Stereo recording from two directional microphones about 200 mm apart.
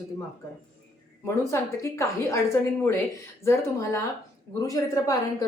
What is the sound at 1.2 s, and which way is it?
A woman's voice, 15° left (ahead or behind).